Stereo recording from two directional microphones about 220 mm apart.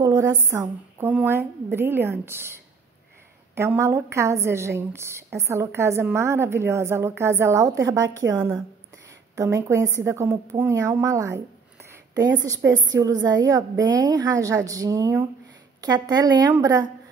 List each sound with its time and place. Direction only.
0.0 s a woman's voice: 15° right (ahead or behind)